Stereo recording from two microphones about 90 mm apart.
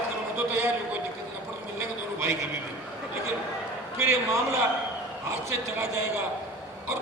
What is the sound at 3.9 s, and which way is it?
A man's voice, 30° right (ahead or behind).